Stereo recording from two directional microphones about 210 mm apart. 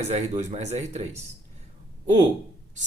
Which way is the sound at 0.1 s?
30° right (ahead or behind).